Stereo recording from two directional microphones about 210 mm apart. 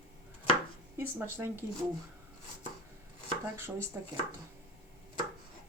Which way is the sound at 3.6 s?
10° right (ahead or behind).